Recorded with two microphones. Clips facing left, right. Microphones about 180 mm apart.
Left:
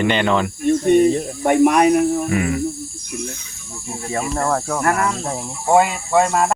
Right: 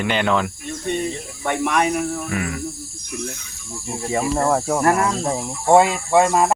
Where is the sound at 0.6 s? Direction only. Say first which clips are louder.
Left 11 dB; 45° left (ahead or behind).